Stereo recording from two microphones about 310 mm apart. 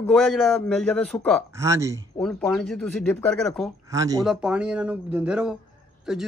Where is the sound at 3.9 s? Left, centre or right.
Centre.